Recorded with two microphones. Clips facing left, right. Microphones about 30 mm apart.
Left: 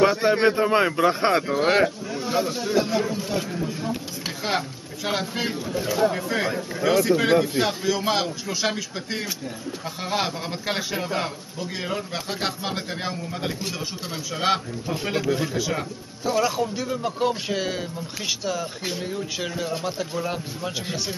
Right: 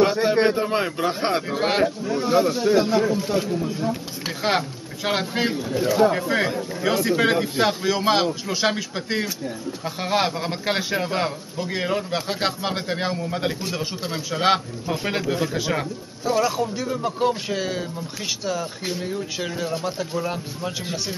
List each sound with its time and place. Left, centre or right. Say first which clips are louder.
0.0 s a man's voice: even; centre
4.4 s a man's voice: right 4 dB; centre
16.3 s speech: right 1 dB; centre